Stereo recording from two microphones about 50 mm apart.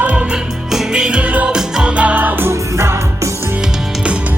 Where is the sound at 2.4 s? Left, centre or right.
Right.